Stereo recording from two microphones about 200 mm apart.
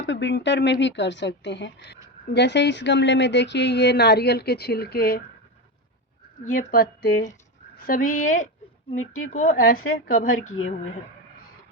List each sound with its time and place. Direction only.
0.0 s speech: 60° left (ahead or behind)
6.4 s a woman's voice: 40° left (ahead or behind)